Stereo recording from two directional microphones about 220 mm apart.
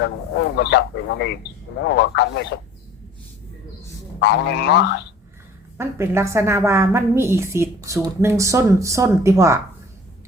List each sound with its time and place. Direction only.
0.0 s speech: 50° left (ahead or behind)
4.2 s speech: 50° left (ahead or behind)
5.7 s a woman's voice: 10° right (ahead or behind)